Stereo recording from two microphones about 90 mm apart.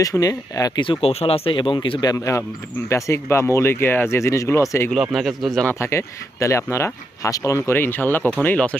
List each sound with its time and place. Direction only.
0.0 s speech: 40° left (ahead or behind)
0.8 s speech: 80° left; by 2.0 s 60° left (ahead or behind)
2.0 s speech: 35° left (ahead or behind)
5.1 s speech: centre (ahead or behind)
5.8 s speech: 30° left (ahead or behind)
7.7 s speech: 25° left (ahead or behind)